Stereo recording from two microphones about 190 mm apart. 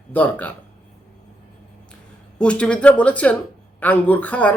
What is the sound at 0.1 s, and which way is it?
Speech, 10° left (ahead or behind).